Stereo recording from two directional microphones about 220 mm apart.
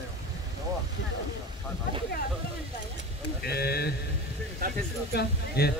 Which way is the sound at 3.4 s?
45° left (ahead or behind).